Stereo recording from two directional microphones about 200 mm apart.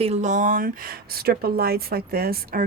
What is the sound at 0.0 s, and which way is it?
A woman's voice, 35° right (ahead or behind).